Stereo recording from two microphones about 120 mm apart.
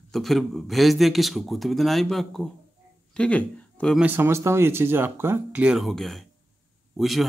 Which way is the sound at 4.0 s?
15° right (ahead or behind).